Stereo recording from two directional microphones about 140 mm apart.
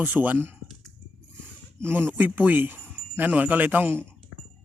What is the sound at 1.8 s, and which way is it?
Speech, 15° right (ahead or behind).